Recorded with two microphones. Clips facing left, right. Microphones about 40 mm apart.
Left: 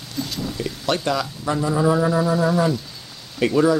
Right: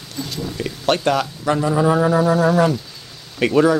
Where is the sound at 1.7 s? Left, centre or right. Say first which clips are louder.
Right 2 dB; right.